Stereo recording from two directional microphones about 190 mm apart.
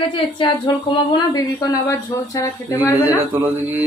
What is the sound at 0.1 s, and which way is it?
Speech, 25° left (ahead or behind).